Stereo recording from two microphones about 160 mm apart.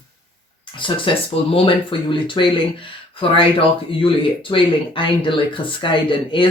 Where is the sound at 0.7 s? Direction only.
30° left (ahead or behind).